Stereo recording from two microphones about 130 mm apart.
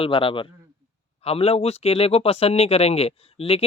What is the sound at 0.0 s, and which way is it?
Speech, 45° left (ahead or behind).